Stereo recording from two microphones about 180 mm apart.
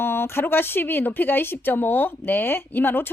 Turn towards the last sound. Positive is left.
turn(degrees=10)  # may be behind; listen again after turning